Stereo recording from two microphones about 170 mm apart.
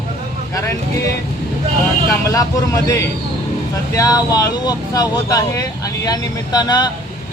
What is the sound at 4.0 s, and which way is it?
Speech, 20° left (ahead or behind).